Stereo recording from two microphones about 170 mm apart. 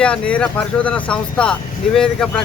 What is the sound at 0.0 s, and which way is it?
Speech, 5° left (ahead or behind).